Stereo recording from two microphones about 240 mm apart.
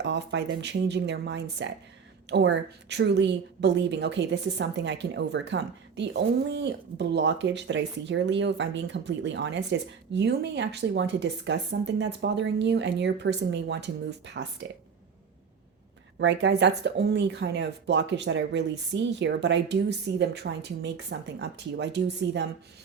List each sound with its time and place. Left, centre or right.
0.0 s a woman's voice: right
16.1 s a woman's voice: right